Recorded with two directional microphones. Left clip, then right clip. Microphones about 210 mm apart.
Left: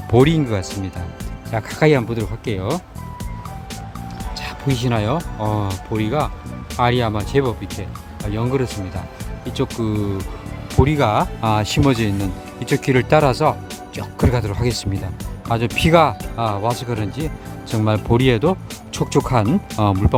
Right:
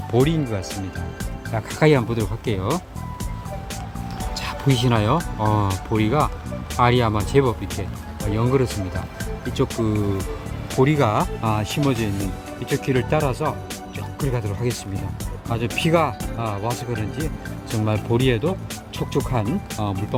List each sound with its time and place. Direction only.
0.1 s speech: 25° left (ahead or behind)
1.5 s speech: 10° left (ahead or behind)
4.4 s speech: centre (ahead or behind); by 20.1 s 30° left (ahead or behind)